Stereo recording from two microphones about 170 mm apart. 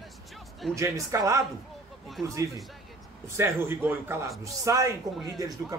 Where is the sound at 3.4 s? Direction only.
15° right (ahead or behind).